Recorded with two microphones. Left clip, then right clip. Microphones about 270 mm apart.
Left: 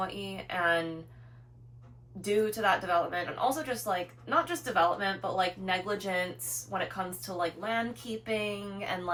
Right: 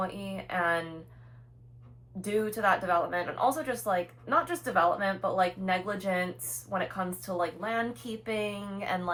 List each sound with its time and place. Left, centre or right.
0.0 s speech: centre
2.2 s speech: centre